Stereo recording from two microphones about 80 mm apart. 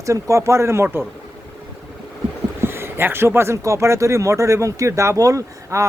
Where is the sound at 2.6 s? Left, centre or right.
Right.